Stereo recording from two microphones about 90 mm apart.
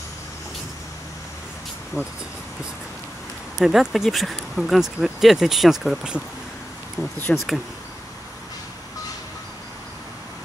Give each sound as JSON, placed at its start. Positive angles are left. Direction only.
{"t": 2.0, "sound": "speech", "side_deg": 30}
{"t": 3.5, "sound": "speech", "side_deg": 0}
{"t": 7.0, "sound": "speech", "side_deg": 30}
{"t": 7.3, "sound": "speech", "side_deg": 0}